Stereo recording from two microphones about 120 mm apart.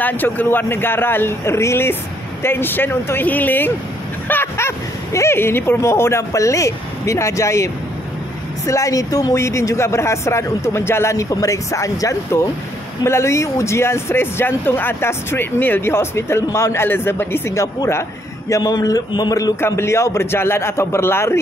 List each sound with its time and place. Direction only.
0.0 s speech: 15° left (ahead or behind); by 19.5 s 35° left (ahead or behind)
19.6 s speech: 20° left (ahead or behind)